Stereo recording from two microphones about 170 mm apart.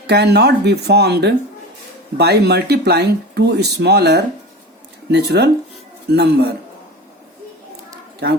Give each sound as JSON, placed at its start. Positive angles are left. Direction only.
{"t": 0.1, "sound": "speech", "side_deg": -75}